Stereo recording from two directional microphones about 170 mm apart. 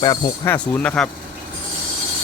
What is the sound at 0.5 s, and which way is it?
Speech, 5° left (ahead or behind).